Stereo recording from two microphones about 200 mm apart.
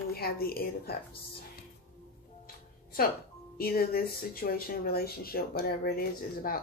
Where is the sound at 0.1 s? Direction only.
50° left (ahead or behind).